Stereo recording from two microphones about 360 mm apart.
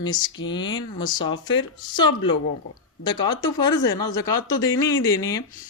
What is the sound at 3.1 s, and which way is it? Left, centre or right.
Speech, centre.